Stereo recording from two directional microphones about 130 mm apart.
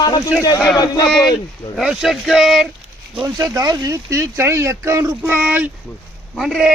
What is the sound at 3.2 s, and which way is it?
Speech, 25° right (ahead or behind).